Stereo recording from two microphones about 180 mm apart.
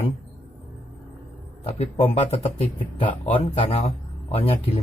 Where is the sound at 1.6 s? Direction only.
35° left (ahead or behind).